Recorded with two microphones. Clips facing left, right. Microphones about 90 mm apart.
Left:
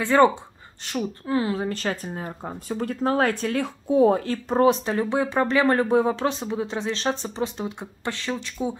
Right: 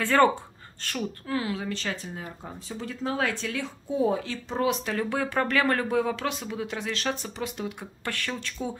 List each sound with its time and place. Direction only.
0.0 s speech: 20° left (ahead or behind)